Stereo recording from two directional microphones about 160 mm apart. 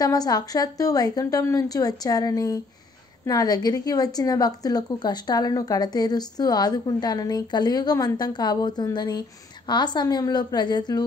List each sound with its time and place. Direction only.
0.0 s a woman's voice: 25° left (ahead or behind)